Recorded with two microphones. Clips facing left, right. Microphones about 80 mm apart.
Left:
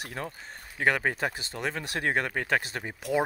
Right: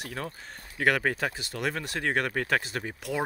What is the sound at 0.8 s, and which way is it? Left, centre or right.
Speech, centre.